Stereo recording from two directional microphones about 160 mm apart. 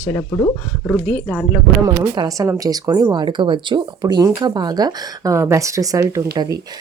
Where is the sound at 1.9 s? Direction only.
25° right (ahead or behind).